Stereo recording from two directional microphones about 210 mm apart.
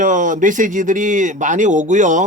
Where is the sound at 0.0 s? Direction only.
40° right (ahead or behind).